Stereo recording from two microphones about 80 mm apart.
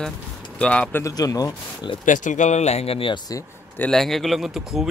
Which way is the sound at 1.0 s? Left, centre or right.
Left.